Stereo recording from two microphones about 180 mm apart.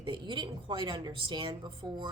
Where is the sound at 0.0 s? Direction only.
25° right (ahead or behind).